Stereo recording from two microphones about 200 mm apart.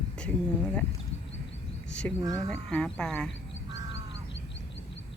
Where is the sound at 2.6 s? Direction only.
5° left (ahead or behind).